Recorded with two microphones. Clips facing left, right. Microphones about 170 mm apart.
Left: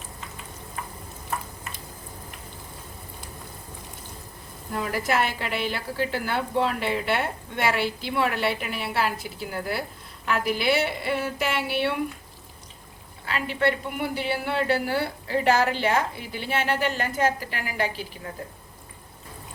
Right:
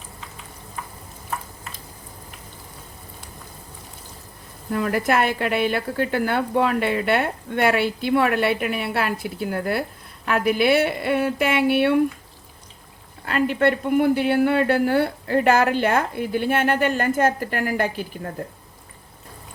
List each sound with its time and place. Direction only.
4.7 s a woman's voice: 55° right (ahead or behind)
13.2 s a woman's voice: 50° right (ahead or behind)